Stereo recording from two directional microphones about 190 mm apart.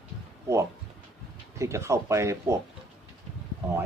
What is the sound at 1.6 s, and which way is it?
Speech, 15° right (ahead or behind).